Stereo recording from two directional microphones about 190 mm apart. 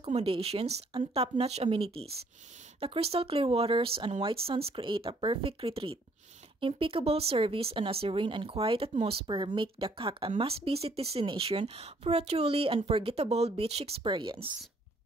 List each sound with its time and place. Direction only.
0.0 s speech: 30° right (ahead or behind)